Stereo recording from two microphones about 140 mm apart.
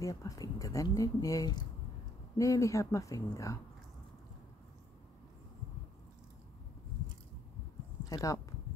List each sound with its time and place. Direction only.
0.0 s speech: 25° left (ahead or behind)
8.1 s speech: 25° left (ahead or behind)